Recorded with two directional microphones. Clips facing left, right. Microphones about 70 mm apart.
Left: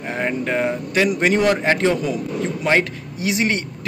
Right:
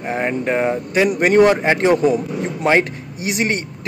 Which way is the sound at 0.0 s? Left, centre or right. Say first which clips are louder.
Right 3 dB; right.